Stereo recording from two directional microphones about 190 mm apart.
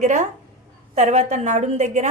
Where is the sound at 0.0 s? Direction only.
40° right (ahead or behind).